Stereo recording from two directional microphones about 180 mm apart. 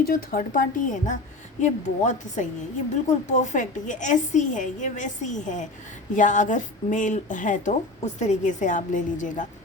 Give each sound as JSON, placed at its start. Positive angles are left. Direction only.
{"t": 0.0, "sound": "speech", "side_deg": 55}